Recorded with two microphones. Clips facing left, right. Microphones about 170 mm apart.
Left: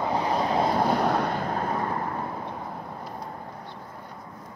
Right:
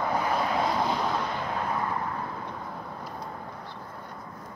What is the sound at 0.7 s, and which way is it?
Vehicle, 55° left (ahead or behind).